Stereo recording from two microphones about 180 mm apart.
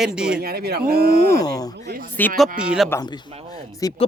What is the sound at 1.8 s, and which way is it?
Speech, 55° right (ahead or behind).